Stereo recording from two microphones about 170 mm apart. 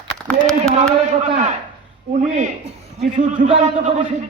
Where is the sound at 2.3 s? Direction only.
40° right (ahead or behind).